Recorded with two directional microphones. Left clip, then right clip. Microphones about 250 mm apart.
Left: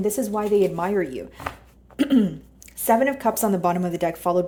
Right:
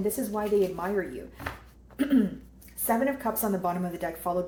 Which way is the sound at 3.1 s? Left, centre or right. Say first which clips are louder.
Left 7 dB; left.